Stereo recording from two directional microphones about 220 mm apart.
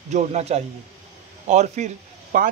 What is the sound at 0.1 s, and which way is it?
Speech, 30° right (ahead or behind).